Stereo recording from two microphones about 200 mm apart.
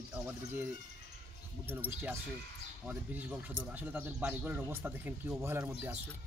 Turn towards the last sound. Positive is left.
turn(degrees=-10)  # may be behind; listen again after turning